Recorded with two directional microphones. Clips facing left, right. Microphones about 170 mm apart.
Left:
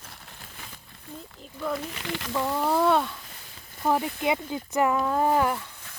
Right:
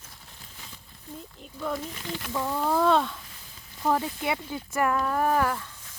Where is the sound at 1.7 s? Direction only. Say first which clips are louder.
Left 2 dB; 75° left (ahead or behind).